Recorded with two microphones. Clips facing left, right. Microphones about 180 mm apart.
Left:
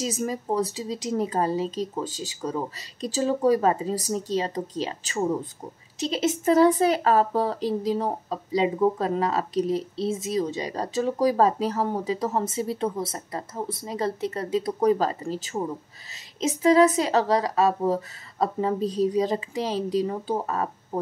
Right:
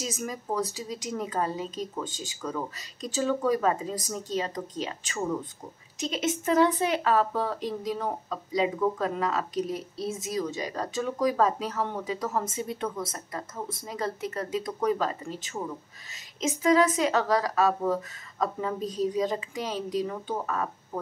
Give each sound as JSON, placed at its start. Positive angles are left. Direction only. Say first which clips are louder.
{"t": 0.0, "sound": "a woman's voice", "louder": "left 6 dB", "side_deg": 30}